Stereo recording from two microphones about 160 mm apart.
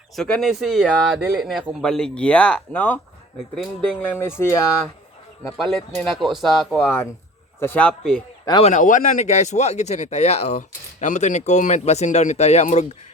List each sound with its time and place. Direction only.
0.2 s speech: 5° left (ahead or behind)
5.5 s speech: centre (ahead or behind)
6.7 s speech: 15° left (ahead or behind)
8.6 s speech: 50° left (ahead or behind)